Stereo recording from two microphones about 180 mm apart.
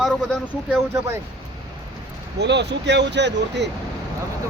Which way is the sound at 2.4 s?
75° right (ahead or behind).